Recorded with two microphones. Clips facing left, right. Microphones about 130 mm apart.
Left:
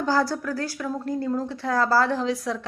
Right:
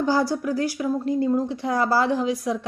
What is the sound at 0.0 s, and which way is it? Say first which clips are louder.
A woman's voice: right 2 dB; 15° right (ahead or behind).